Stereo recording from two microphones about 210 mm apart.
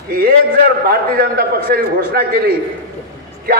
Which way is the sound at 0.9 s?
45° right (ahead or behind).